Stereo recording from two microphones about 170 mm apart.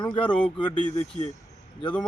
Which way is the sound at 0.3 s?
10° left (ahead or behind).